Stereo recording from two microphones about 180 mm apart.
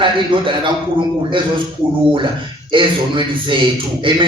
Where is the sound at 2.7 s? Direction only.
25° right (ahead or behind).